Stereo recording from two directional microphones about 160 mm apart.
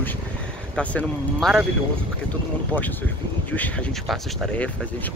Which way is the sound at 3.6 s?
5° left (ahead or behind).